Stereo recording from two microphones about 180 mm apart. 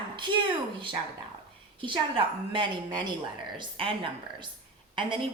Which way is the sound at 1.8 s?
30° right (ahead or behind).